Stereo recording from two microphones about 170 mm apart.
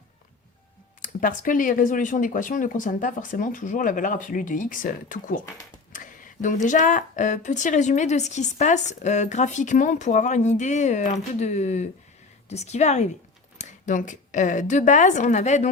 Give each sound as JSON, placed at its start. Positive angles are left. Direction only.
{"t": 1.0, "sound": "a woman's voice", "side_deg": 50}
{"t": 5.9, "sound": "a sound", "side_deg": 50}
{"t": 6.7, "sound": "a woman's voice", "side_deg": 50}